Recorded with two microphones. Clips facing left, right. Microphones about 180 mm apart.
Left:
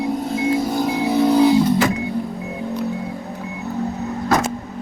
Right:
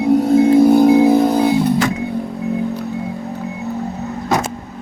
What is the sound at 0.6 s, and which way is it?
Music, 55° right (ahead or behind).